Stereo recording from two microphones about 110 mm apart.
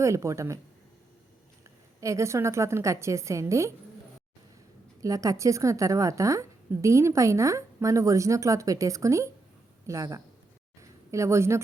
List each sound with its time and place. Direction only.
0.0 s a woman's voice: 25° right (ahead or behind)
2.0 s a woman's voice: 30° right (ahead or behind)
4.9 s a woman's voice: 30° right (ahead or behind)